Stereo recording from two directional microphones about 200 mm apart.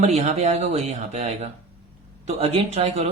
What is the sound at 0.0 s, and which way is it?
Speech, 35° right (ahead or behind).